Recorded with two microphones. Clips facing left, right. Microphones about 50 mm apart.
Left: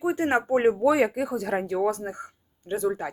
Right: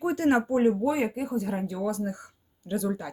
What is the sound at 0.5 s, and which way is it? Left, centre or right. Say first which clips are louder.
Speech: left 2 dB; left.